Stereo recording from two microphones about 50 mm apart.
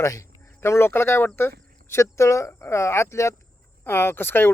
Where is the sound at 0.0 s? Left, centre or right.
Left.